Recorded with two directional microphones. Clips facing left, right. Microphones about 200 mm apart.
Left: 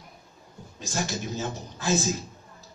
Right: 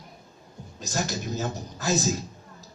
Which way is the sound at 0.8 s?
40° right (ahead or behind).